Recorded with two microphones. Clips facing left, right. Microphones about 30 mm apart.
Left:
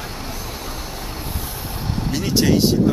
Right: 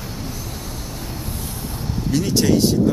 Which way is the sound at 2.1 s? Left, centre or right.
Centre.